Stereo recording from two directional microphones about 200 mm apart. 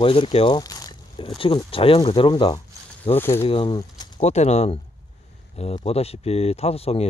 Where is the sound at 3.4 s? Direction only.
25° left (ahead or behind).